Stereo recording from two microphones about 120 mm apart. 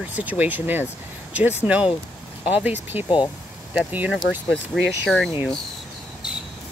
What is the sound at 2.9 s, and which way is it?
Speech, 15° right (ahead or behind).